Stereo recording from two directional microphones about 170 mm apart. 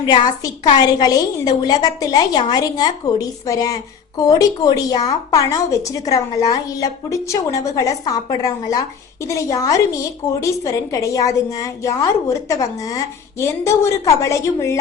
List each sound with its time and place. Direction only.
0.0 s a woman's voice: 25° left (ahead or behind)